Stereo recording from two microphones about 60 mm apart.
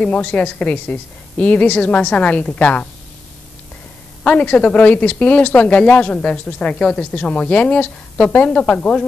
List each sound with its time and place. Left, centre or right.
0.0 s speech: left
4.2 s speech: left